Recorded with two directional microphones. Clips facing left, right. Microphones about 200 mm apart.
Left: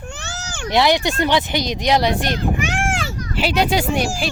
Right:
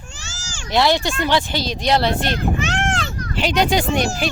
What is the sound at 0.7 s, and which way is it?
Speech, 15° left (ahead or behind).